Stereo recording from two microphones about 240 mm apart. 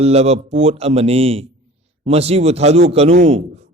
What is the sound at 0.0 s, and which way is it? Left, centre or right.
A man's voice, right.